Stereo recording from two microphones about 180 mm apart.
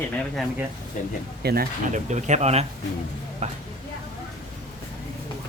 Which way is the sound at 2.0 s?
40° right (ahead or behind).